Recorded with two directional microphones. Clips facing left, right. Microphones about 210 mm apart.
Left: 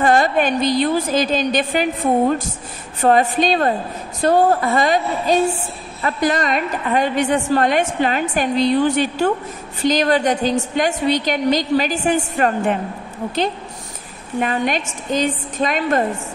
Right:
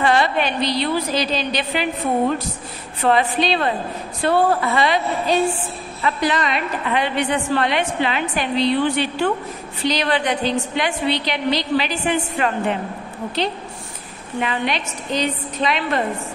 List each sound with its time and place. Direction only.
0.0 s a woman's voice: 45° left (ahead or behind)
14.4 s a woman's voice: 45° left (ahead or behind)